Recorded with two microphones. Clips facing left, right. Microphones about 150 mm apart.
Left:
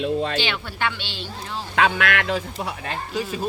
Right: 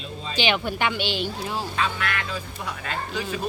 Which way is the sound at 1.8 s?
70° left (ahead or behind).